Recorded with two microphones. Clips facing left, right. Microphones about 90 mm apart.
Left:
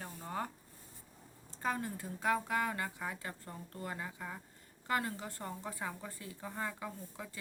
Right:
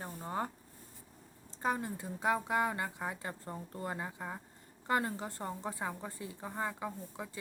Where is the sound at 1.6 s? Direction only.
20° right (ahead or behind).